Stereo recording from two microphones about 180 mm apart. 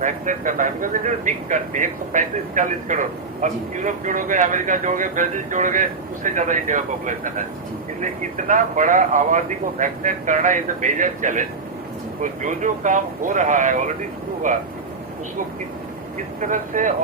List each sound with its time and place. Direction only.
0.0 s speech: 45° right (ahead or behind)
16.1 s speech: 45° right (ahead or behind)